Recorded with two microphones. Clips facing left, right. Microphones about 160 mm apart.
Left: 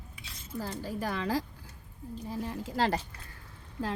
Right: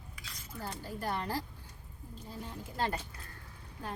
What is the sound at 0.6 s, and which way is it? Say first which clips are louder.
A woman's voice: left 6 dB; 90° left.